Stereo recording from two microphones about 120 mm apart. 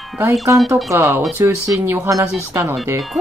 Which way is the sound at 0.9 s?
20° right (ahead or behind).